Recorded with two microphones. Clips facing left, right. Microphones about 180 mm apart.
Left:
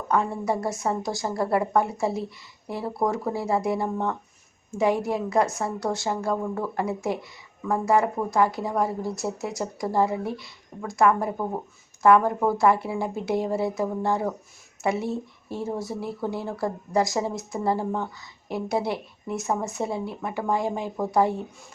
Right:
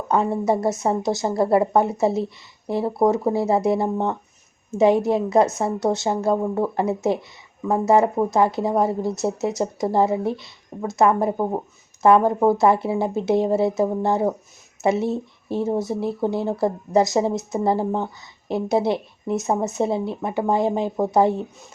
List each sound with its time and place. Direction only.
0.1 s a woman's voice: 20° right (ahead or behind)